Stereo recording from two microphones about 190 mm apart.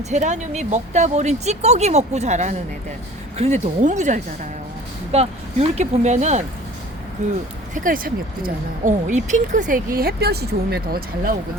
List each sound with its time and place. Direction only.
0.1 s speech: 40° right (ahead or behind)